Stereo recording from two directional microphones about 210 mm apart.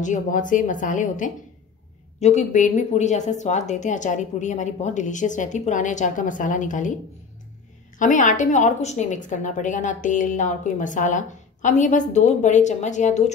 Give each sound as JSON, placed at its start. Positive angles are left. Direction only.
{"t": 0.0, "sound": "speech", "side_deg": 35}
{"t": 8.0, "sound": "speech", "side_deg": 35}